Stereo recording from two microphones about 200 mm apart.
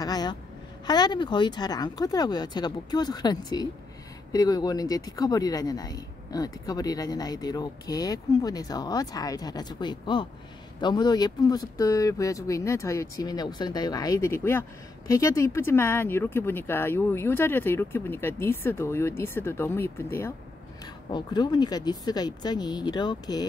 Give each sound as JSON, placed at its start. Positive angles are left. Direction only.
{"t": 0.0, "sound": "a woman's voice", "side_deg": 20}